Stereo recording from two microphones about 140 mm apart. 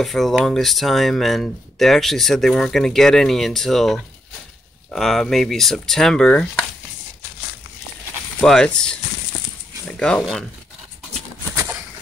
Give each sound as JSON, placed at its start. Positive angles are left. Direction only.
{"t": 0.0, "sound": "speech", "side_deg": 0}
{"t": 8.4, "sound": "speech", "side_deg": 5}